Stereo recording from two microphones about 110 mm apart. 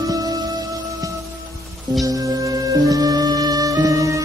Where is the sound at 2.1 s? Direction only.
30° right (ahead or behind).